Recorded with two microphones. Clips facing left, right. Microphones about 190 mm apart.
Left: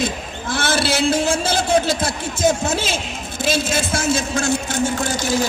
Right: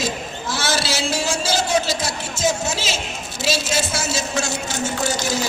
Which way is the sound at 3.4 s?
55° left (ahead or behind).